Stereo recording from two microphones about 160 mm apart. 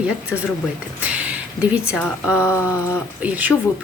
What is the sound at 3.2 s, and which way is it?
Speech, 10° right (ahead or behind).